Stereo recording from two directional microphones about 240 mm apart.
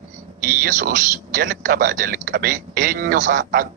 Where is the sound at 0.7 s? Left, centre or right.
Right.